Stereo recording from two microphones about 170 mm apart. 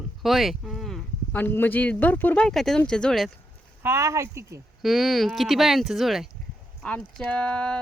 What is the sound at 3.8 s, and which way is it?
Speech, 15° right (ahead or behind).